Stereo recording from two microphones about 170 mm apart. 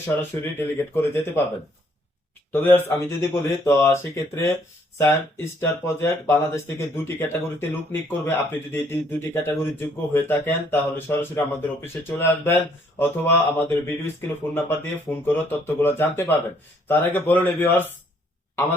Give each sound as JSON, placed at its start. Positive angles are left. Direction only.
{"t": 0.2, "sound": "speech", "side_deg": 15}
{"t": 2.5, "sound": "speech", "side_deg": 10}